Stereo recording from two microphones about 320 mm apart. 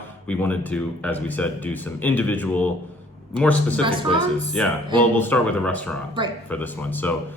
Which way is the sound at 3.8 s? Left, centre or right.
Centre.